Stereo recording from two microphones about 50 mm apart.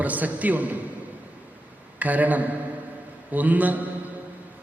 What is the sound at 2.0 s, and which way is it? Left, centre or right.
A man's voice, right.